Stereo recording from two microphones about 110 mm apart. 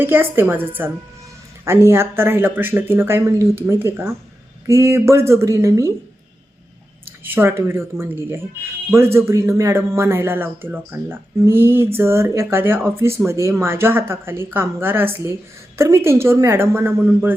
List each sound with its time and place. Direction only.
0.0 s speech: 20° right (ahead or behind)
7.3 s speech: 20° right (ahead or behind)